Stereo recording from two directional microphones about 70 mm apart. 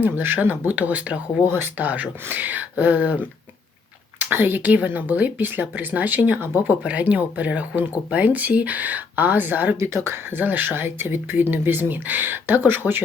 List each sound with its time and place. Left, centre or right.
0.0 s speech: right
1.5 s speech: right
9.7 s speech: right